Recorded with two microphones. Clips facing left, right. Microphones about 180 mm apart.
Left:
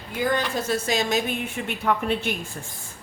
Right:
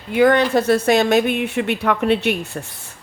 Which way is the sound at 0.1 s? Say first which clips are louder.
Right 10 dB; 70° right (ahead or behind).